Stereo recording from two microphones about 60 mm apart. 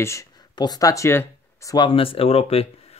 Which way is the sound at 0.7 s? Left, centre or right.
Left.